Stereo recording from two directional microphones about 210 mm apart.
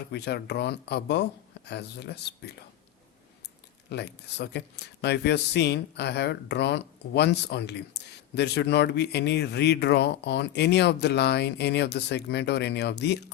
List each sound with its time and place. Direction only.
0.1 s speech: 55° left (ahead or behind)
3.8 s speech: 55° left (ahead or behind)